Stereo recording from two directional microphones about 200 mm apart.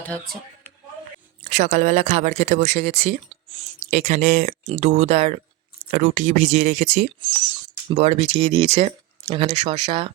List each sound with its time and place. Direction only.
1.5 s speech: 35° right (ahead or behind)